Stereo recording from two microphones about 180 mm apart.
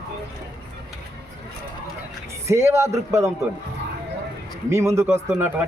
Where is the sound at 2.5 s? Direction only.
15° right (ahead or behind).